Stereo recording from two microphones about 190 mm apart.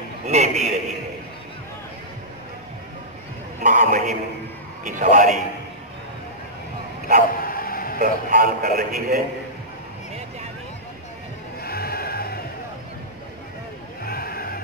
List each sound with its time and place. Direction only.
0.3 s a man's voice: 35° right (ahead or behind)
3.6 s a man's voice: 45° right (ahead or behind)
7.2 s bow-wow: 50° left (ahead or behind)
8.0 s a man's voice: 45° right (ahead or behind)
11.6 s a sound: 55° left (ahead or behind)
14.0 s a sound: 55° left (ahead or behind)